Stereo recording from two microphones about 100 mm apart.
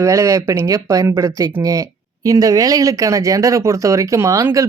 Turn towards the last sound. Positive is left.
turn(degrees=-35)  # may be behind; listen again after turning